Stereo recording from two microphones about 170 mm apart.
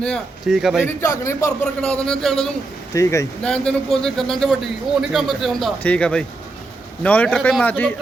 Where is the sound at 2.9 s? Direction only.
20° left (ahead or behind).